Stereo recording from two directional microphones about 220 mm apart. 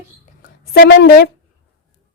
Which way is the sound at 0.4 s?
45° left (ahead or behind).